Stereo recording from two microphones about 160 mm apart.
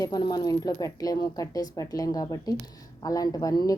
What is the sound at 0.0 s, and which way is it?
A woman's voice, 25° left (ahead or behind).